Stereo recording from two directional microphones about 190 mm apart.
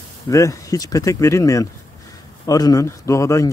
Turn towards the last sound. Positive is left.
turn(degrees=15)  # may be behind; listen again after turning